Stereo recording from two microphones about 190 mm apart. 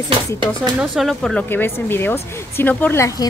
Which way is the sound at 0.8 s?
Centre (ahead or behind).